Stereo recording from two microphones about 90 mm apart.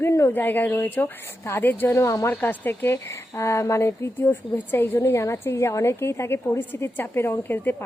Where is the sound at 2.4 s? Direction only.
25° left (ahead or behind).